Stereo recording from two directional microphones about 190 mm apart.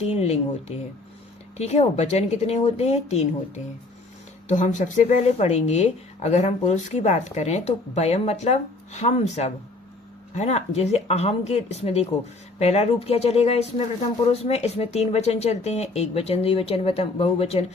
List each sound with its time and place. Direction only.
0.1 s speech: 35° left (ahead or behind)
1.5 s speech: 35° left (ahead or behind)